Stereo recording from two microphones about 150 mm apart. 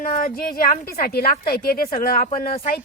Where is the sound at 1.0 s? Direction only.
90° left; by 2.6 s 70° left (ahead or behind).